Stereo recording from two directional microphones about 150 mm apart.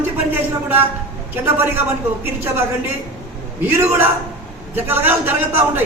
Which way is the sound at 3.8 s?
15° right (ahead or behind).